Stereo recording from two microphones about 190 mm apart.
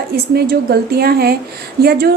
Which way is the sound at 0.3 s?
55° right (ahead or behind).